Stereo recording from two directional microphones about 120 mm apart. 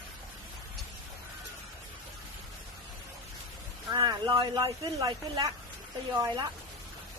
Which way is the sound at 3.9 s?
35° right (ahead or behind).